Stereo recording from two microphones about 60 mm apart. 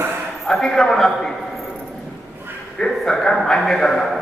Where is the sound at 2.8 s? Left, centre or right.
Centre.